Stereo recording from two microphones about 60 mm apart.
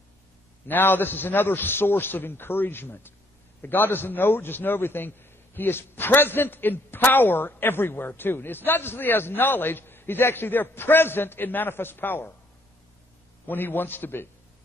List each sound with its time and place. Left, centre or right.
0.7 s a man's voice: left
13.5 s a man's voice: left